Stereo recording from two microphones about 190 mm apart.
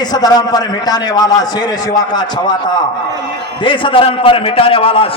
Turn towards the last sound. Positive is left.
turn(degrees=30)  # may be behind; listen again after turning